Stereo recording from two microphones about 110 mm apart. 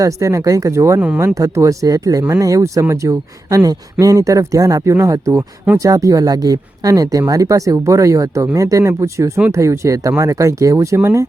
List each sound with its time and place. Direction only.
0.0 s speech: 30° right (ahead or behind)